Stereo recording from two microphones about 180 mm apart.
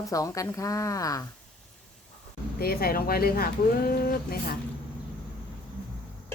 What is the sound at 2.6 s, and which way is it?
Speech, 55° left (ahead or behind).